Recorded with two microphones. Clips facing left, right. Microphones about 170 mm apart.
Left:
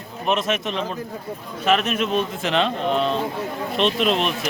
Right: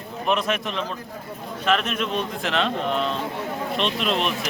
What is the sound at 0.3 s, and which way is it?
Speech, 35° left (ahead or behind).